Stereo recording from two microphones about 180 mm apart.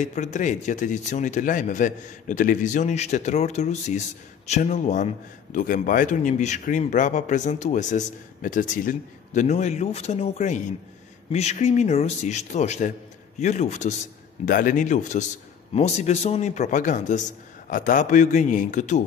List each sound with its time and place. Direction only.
0.0 s a man's voice: 40° left (ahead or behind)